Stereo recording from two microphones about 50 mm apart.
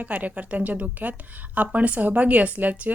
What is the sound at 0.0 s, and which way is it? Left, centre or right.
A woman's voice, right.